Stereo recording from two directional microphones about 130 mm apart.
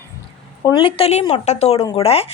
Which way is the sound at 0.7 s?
40° left (ahead or behind).